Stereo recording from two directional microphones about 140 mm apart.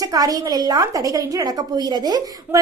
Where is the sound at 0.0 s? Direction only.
25° right (ahead or behind).